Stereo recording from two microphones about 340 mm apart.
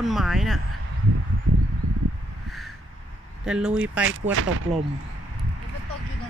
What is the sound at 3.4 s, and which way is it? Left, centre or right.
Speech, centre.